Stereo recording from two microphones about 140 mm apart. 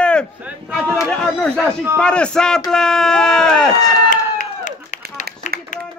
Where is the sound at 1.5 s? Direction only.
15° right (ahead or behind).